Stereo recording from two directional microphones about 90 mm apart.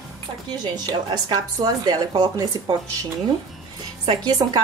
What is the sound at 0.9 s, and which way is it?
A woman's voice, 50° right (ahead or behind).